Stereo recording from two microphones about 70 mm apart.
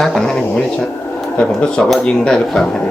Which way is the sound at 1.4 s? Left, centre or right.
Centre.